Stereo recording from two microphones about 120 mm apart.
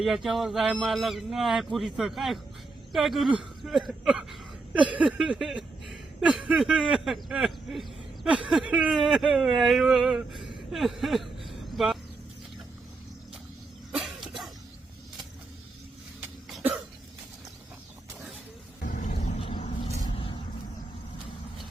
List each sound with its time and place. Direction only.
0.0 s speech: centre (ahead or behind)
13.9 s cough: 5° right (ahead or behind)
18.9 s vehicle: 85° left
19.4 s vehicle: 45° left (ahead or behind)